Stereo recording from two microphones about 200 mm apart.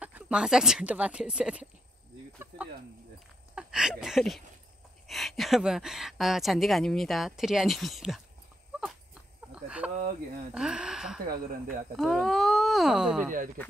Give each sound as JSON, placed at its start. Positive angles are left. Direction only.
{"t": 0.0, "sound": "speech", "side_deg": -5}
{"t": 10.5, "sound": "speech", "side_deg": -5}
{"t": 11.2, "sound": "speech", "side_deg": -45}
{"t": 12.0, "sound": "speech", "side_deg": 0}